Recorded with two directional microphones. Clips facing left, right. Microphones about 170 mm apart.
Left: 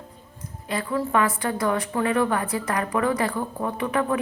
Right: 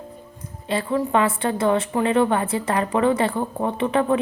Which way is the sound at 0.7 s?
30° right (ahead or behind).